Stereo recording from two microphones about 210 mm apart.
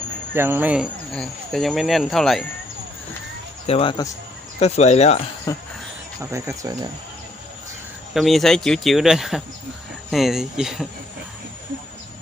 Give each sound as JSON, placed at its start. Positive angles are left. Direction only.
{"t": 0.3, "sound": "speech", "side_deg": -10}
{"t": 3.7, "sound": "speech", "side_deg": 25}
{"t": 4.6, "sound": "speech", "side_deg": 30}
{"t": 5.5, "sound": "a sound", "side_deg": 15}
{"t": 6.1, "sound": "speech", "side_deg": -15}
{"t": 8.1, "sound": "speech", "side_deg": 0}